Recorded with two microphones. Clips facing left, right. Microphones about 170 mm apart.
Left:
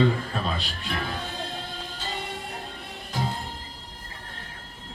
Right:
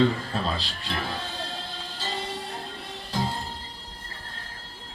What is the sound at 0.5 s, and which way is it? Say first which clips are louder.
Music: even; 35° right (ahead or behind).